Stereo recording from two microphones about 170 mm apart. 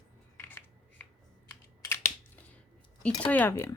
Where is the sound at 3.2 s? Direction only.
10° left (ahead or behind).